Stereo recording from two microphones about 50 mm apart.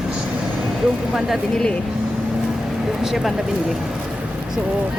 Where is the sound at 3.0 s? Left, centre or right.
Centre.